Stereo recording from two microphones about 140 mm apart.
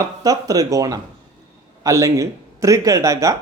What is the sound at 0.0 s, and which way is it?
Speech, 25° right (ahead or behind).